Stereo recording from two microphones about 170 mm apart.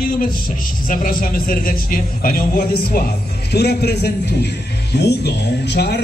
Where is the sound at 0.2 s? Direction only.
55° left (ahead or behind).